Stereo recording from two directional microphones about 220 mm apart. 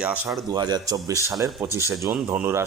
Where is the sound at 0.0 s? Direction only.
5° right (ahead or behind).